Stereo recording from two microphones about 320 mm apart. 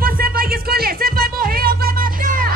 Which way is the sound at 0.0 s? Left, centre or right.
Right.